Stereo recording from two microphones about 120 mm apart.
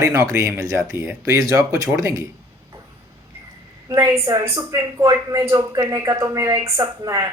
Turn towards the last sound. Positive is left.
turn(degrees=-25)  # may be behind; listen again after turning